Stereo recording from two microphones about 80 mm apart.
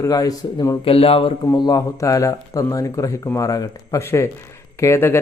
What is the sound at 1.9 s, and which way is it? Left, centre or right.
Speech, left.